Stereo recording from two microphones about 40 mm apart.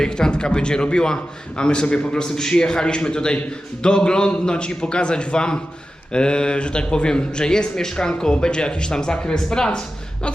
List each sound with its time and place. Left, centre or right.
0.0 s speech: left